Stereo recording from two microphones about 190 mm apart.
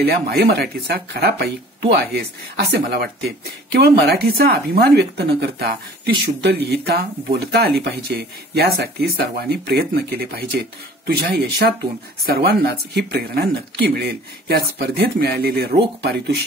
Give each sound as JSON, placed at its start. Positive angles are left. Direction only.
{"t": 0.0, "sound": "speech", "side_deg": -55}